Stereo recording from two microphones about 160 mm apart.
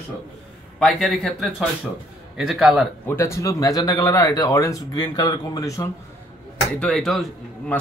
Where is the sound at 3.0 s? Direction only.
20° left (ahead or behind).